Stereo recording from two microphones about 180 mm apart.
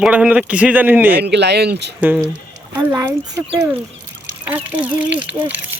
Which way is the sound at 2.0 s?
10° right (ahead or behind).